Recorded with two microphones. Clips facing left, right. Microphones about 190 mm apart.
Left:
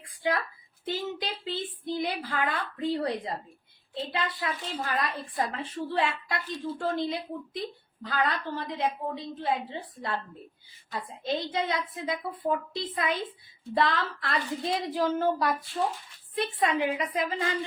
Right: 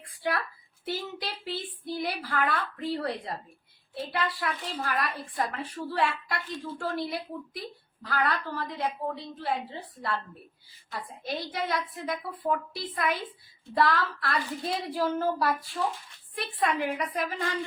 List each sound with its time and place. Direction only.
0.2 s a woman's voice: 20° left (ahead or behind)
10.9 s a woman's voice: 20° left (ahead or behind)